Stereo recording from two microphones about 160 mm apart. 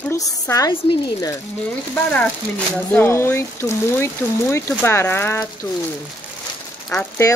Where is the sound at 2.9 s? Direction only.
15° left (ahead or behind).